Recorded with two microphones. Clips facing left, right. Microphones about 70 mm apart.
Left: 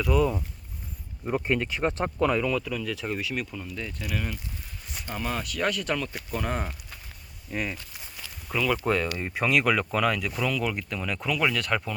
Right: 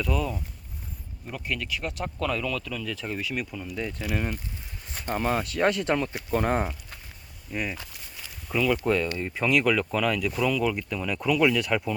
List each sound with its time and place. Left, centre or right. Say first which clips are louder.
0.0 s speech: left 5 dB; centre
1.5 s speech: left 3 dB; left
2.1 s speech: left 2 dB; left; by 3.7 s centre
3.7 s speech: right 3 dB; centre
4.9 s speech: right 5 dB; right
7.5 s speech: even; centre
9.1 s speech: right 1 dB; centre
9.4 s speech: right 1 dB; centre